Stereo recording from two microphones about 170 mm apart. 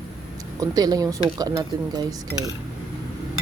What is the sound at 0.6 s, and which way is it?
Speech, 20° right (ahead or behind).